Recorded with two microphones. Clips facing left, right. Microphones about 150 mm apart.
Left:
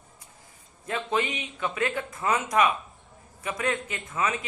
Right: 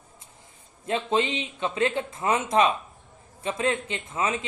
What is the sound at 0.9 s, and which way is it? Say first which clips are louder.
A man's voice: right 3 dB; 25° right (ahead or behind).